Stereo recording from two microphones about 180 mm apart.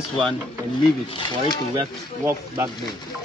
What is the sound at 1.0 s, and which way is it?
Speech, 25° left (ahead or behind).